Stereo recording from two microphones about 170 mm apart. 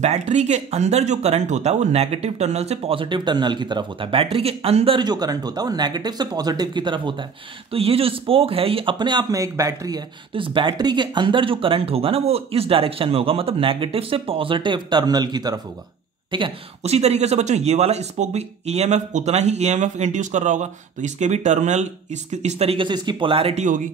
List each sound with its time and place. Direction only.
0.0 s speech: 40° right (ahead or behind)